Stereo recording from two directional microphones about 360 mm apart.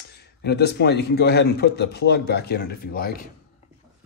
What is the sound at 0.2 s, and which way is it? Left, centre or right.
A man's voice, left.